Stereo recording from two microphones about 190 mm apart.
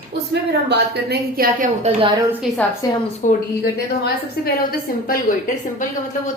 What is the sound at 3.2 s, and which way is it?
Speech, 40° left (ahead or behind).